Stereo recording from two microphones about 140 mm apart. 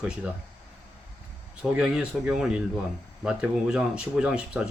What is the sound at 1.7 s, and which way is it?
Speech, 5° right (ahead or behind).